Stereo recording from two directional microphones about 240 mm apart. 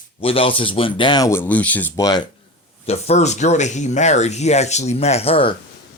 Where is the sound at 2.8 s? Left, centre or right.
Left.